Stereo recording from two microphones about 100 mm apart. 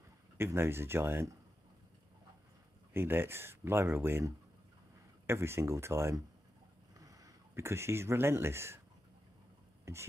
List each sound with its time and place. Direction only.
0.4 s speech: 25° right (ahead or behind)
2.9 s speech: 25° right (ahead or behind)